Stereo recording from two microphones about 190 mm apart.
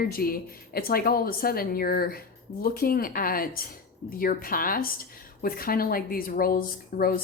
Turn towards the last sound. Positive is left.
turn(degrees=50)  # may be behind; listen again after turning